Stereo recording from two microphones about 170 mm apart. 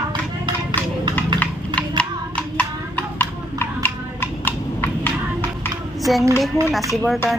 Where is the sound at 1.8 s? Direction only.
5° left (ahead or behind).